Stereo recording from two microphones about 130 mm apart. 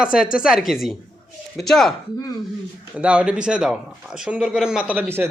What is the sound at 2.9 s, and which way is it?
Speech, 10° right (ahead or behind).